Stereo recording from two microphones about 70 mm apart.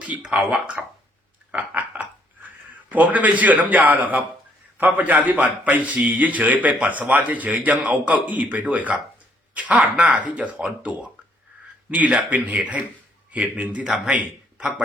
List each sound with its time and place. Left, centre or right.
0.2 s speech: centre
1.5 s a sound: right
2.9 s a man's voice: right